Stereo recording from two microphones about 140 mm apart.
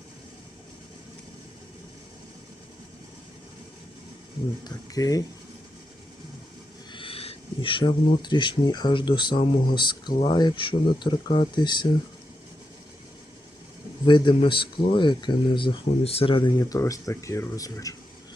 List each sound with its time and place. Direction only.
4.6 s speech: 25° left (ahead or behind)
6.9 s speech: 40° left (ahead or behind)
14.0 s speech: 35° left (ahead or behind)
16.6 s speech: 25° left (ahead or behind)